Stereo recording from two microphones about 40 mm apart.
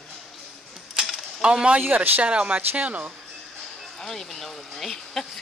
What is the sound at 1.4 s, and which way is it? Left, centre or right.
Speech, right.